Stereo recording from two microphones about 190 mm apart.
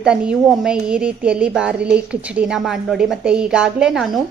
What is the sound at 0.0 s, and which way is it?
A woman's voice, 5° right (ahead or behind).